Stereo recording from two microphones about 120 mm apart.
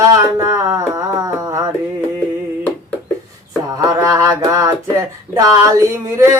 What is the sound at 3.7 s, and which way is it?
Music, 30° right (ahead or behind).